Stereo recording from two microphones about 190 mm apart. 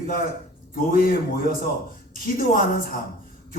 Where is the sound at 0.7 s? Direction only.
45° left (ahead or behind).